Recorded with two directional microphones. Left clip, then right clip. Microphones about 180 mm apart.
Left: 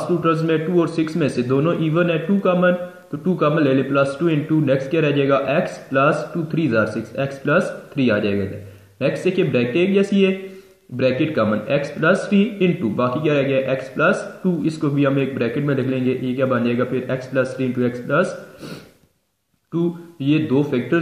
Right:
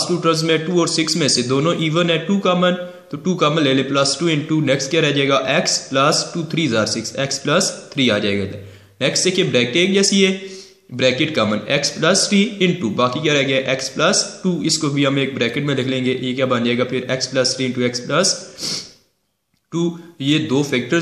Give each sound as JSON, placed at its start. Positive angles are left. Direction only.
{"t": 0.2, "sound": "a man's voice", "side_deg": -20}
{"t": 19.7, "sound": "a man's voice", "side_deg": -20}